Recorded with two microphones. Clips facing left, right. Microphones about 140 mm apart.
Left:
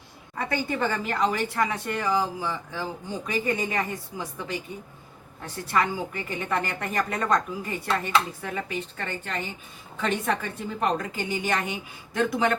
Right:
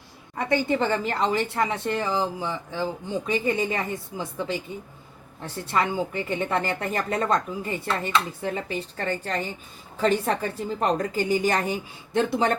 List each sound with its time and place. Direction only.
0.3 s a woman's voice: 20° right (ahead or behind)